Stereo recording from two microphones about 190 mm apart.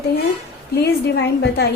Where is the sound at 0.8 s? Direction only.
60° left (ahead or behind).